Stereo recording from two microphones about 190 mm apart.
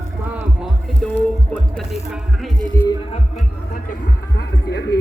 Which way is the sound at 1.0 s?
10° left (ahead or behind).